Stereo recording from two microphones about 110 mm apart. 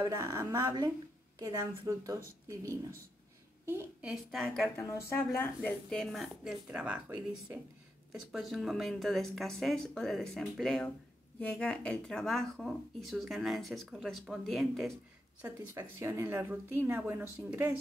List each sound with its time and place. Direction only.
0.0 s a woman's voice: 25° right (ahead or behind)
4.0 s speech: 5° right (ahead or behind)
4.7 s speech: 25° left (ahead or behind)
5.7 s speech: 5° left (ahead or behind)
6.7 s speech: 10° right (ahead or behind)
8.1 s speech: centre (ahead or behind)
15.4 s a woman's voice: 25° right (ahead or behind)